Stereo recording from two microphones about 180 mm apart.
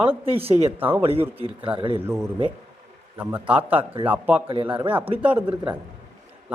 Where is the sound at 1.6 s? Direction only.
30° right (ahead or behind).